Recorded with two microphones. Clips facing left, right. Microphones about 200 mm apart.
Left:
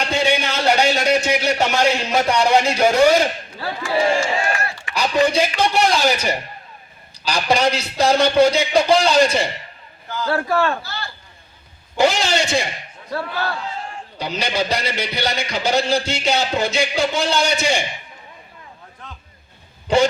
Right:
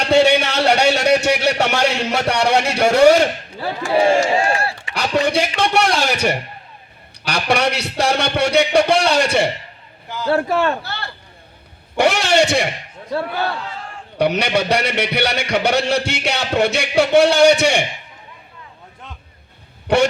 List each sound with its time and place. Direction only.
0.1 s a sound: 70° right (ahead or behind)
3.9 s speech: 30° right (ahead or behind)
4.9 s a man's voice: 70° right (ahead or behind)
10.2 s a man's voice: 25° right (ahead or behind)
10.8 s a sound: 65° right (ahead or behind)
11.9 s a man's voice: 70° right (ahead or behind)
14.2 s a man's voice: 70° right (ahead or behind)
19.9 s a man's voice: 70° right (ahead or behind)